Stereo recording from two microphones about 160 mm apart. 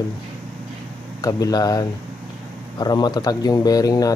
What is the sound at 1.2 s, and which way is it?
Speech, 25° left (ahead or behind).